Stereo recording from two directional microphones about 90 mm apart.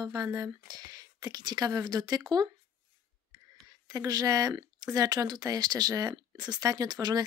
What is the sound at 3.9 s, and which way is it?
Speech, 45° right (ahead or behind).